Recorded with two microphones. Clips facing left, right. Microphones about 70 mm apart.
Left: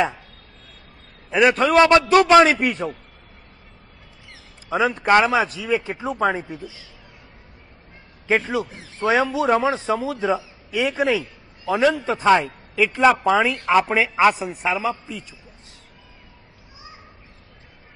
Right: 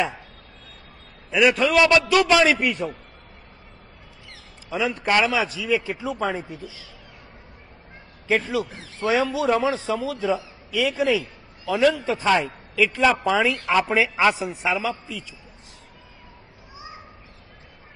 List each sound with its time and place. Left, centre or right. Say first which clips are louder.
1.3 s a man's voice: left 2 dB; left
4.6 s a man's voice: left 5 dB; left
6.1 s a man's voice: left 9 dB; left
8.3 s a man's voice: left 2 dB; left
13.4 s a man's voice: left 3 dB; centre